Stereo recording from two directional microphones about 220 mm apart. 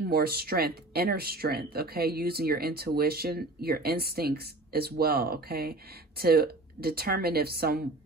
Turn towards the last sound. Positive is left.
turn(degrees=-45)  # may be behind; listen again after turning